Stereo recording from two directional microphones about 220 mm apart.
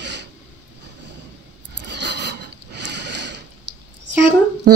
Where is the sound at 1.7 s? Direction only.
50° right (ahead or behind).